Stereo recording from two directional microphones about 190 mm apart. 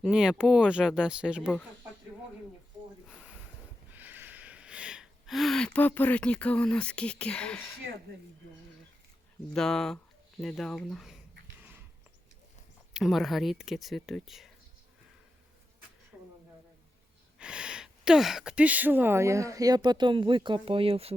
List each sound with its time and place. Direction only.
0.0 s speech: 5° right (ahead or behind)
3.1 s a sound: 5° right (ahead or behind)
3.9 s speech: 10° right (ahead or behind); by 7.8 s 10° left (ahead or behind)
9.6 s speech: 5° left (ahead or behind)
12.9 s speech: centre (ahead or behind)
16.1 s a sound: 5° right (ahead or behind)
17.3 s speech: 5° right (ahead or behind); by 21.2 s 30° right (ahead or behind)